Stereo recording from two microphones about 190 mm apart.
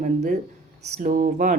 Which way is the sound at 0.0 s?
45° right (ahead or behind).